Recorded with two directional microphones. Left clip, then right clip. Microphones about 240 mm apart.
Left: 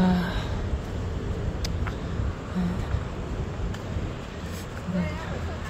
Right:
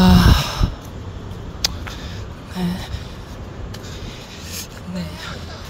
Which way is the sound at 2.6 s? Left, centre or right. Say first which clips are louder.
Right 6 dB; right.